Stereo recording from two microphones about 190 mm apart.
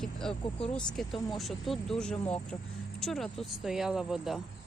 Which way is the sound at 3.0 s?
Centre (ahead or behind).